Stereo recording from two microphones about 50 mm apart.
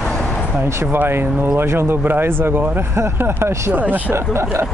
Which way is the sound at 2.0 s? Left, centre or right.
Right.